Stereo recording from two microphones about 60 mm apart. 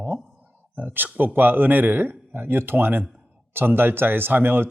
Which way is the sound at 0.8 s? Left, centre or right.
Right.